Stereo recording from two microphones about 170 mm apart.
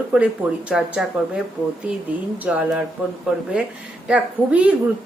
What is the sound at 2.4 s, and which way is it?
Speech, 10° right (ahead or behind).